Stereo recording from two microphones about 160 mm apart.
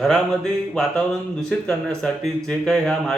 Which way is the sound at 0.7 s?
5° left (ahead or behind).